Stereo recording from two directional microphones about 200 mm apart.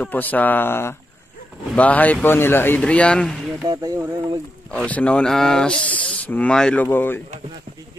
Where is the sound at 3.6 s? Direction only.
20° right (ahead or behind).